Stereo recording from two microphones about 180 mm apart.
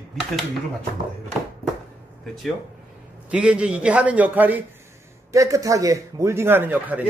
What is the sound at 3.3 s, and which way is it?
A man's voice, 5° right (ahead or behind).